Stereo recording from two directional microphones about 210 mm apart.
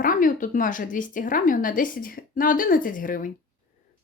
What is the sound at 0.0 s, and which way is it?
Speech, 40° left (ahead or behind).